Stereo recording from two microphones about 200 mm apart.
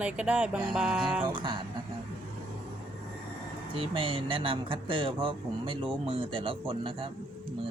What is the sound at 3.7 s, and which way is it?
Speech, 25° right (ahead or behind).